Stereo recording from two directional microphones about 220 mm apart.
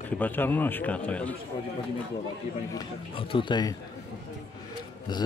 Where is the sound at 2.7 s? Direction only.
25° left (ahead or behind).